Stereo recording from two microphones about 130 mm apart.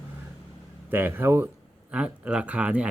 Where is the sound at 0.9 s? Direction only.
15° right (ahead or behind).